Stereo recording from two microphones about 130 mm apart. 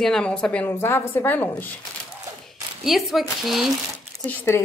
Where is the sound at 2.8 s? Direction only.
Centre (ahead or behind).